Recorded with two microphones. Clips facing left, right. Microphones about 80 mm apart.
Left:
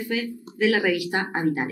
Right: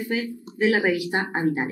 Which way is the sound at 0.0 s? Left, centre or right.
Right.